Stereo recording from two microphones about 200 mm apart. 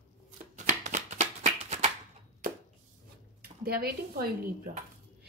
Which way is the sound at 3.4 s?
50° right (ahead or behind).